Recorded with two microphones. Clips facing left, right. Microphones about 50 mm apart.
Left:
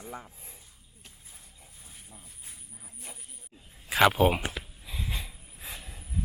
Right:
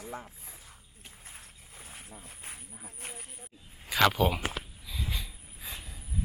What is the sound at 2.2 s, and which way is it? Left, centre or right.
Speech, right.